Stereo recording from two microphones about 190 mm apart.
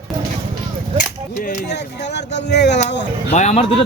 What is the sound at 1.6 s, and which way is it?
Speech, 60° left (ahead or behind).